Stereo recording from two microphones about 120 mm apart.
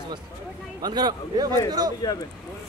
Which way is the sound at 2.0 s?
35° left (ahead or behind).